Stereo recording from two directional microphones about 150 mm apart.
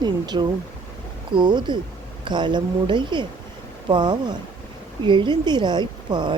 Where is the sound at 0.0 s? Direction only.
30° right (ahead or behind).